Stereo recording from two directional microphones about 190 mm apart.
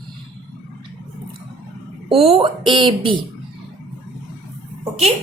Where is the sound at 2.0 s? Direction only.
30° right (ahead or behind).